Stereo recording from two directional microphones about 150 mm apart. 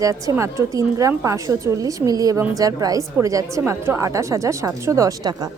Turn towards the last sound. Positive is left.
turn(degrees=-25)  # may be behind; listen again after turning